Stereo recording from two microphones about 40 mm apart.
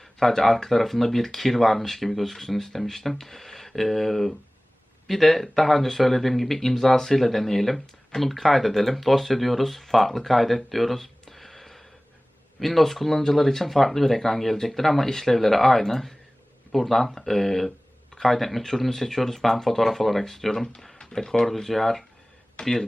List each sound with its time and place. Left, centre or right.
0.0 s speech: centre
21.4 s speech: centre
22.6 s speech: left